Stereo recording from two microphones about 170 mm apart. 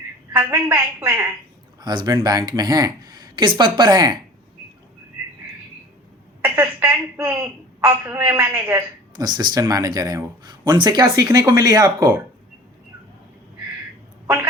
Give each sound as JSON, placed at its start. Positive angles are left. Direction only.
{"t": 0.3, "sound": "a woman's voice", "side_deg": -15}
{"t": 1.8, "sound": "speech", "side_deg": -25}
{"t": 6.4, "sound": "a woman's voice", "side_deg": -10}
{"t": 9.1, "sound": "speech", "side_deg": -25}